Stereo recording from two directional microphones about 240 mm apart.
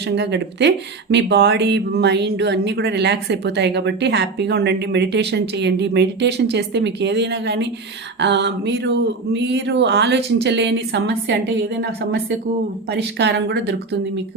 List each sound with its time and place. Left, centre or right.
0.2 s speech: right